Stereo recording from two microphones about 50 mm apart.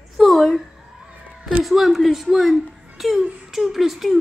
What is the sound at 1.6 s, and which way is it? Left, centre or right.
A woman's voice, centre.